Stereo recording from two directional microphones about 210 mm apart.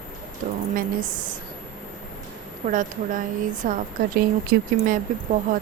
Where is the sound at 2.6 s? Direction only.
40° right (ahead or behind).